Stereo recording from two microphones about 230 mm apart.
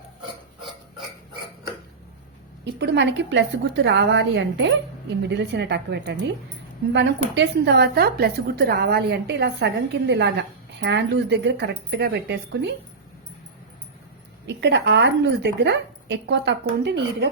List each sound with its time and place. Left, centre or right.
2.7 s speech: right
14.4 s speech: right